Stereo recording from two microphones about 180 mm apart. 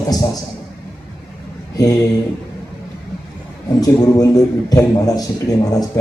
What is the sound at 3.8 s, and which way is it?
A man's voice, 20° left (ahead or behind).